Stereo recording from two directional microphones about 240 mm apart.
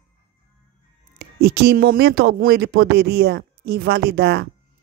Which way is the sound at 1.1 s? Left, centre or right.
Right.